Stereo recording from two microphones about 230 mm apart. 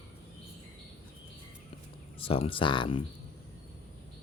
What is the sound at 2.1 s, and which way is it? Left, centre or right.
Speech, left.